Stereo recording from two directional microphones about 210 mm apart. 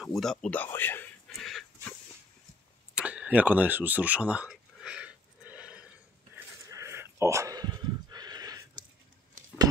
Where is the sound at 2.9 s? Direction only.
5° right (ahead or behind).